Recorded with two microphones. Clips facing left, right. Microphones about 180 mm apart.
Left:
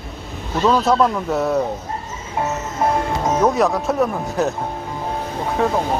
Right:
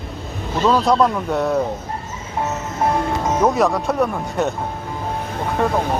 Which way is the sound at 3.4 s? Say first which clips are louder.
Even; centre (ahead or behind).